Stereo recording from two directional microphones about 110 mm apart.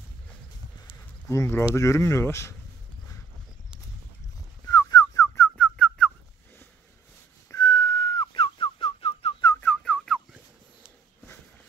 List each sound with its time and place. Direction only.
1.2 s speech: 25° left (ahead or behind)
4.6 s whistling: 30° left (ahead or behind)
5.6 s whistling: 10° left (ahead or behind)
7.5 s whistling: 35° left (ahead or behind); by 9.3 s 55° left (ahead or behind)
9.6 s whistling: 10° left (ahead or behind)